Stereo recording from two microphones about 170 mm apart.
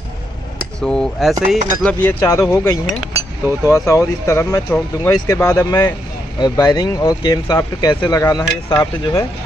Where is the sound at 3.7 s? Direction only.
20° left (ahead or behind).